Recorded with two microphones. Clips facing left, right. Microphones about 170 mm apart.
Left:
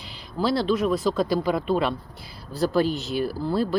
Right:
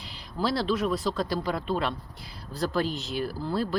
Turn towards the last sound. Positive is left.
turn(degrees=0)  # may be behind; listen again after turning